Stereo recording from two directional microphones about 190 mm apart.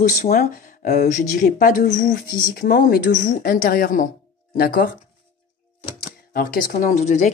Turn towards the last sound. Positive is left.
turn(degrees=40)  # may be behind; listen again after turning